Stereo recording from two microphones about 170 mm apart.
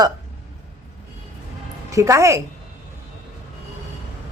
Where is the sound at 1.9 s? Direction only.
20° right (ahead or behind).